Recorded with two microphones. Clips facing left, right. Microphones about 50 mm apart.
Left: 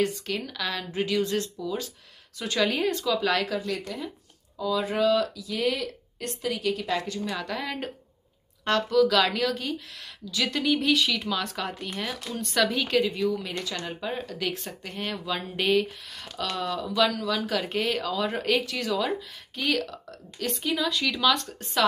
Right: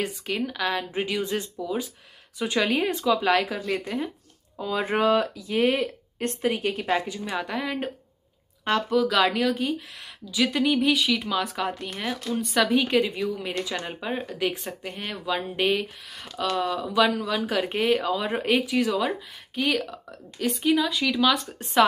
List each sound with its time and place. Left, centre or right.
0.0 s speech: centre
4.6 s speech: right
7.0 s speech: centre
14.1 s speech: centre
16.8 s speech: right
21.8 s speech: right